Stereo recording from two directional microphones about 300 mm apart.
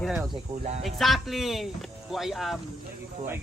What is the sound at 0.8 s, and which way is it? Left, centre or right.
Speech, centre.